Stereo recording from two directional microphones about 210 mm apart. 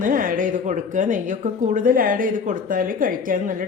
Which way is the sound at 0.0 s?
40° right (ahead or behind).